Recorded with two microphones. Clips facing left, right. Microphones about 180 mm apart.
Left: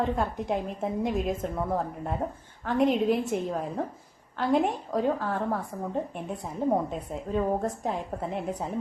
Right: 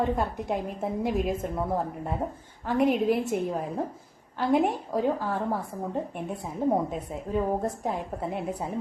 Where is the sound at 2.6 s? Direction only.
5° right (ahead or behind).